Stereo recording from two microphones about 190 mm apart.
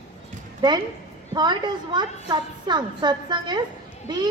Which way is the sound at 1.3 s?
20° right (ahead or behind).